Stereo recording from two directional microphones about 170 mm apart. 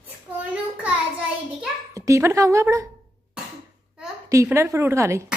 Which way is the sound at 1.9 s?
20° right (ahead or behind).